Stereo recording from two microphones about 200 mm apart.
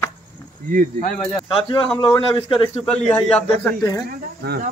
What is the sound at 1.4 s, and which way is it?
A man's voice, 25° left (ahead or behind).